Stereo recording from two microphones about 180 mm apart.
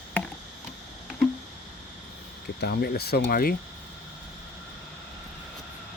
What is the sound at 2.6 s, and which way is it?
Speech, 60° left (ahead or behind).